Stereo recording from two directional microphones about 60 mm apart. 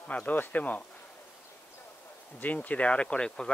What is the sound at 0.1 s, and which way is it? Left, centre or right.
Speech, left.